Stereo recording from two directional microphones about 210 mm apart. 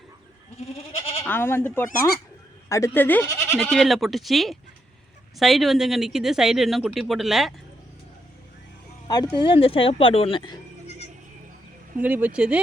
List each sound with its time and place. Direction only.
0.7 s goat: 25° left (ahead or behind)
1.2 s speech: 10° left (ahead or behind)
9.0 s speech: 20° left (ahead or behind)
11.9 s speech: 5° right (ahead or behind)